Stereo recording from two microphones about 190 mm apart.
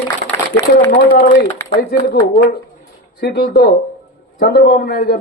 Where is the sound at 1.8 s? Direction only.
50° left (ahead or behind).